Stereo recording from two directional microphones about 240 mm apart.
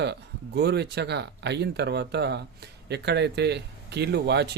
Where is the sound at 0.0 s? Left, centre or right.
Right.